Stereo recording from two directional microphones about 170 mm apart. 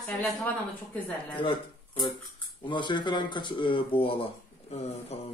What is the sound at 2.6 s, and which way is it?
A man's voice, 30° left (ahead or behind).